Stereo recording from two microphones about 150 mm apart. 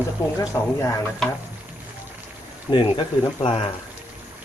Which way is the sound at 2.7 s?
35° left (ahead or behind).